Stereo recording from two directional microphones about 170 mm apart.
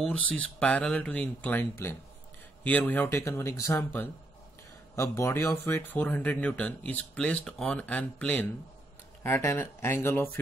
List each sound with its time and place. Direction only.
0.0 s speech: 5° left (ahead or behind)